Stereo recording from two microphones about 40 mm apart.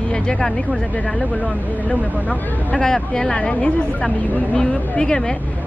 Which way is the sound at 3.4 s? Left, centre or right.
Left.